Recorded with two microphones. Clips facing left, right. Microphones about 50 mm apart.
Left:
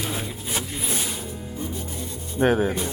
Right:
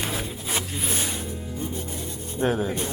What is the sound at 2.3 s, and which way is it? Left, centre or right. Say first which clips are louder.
Speech: left 4 dB; left.